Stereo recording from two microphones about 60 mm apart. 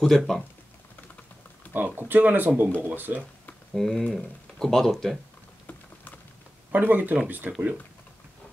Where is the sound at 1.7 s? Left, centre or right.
Right.